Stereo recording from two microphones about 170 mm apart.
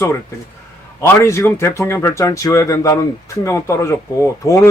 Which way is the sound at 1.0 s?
15° left (ahead or behind).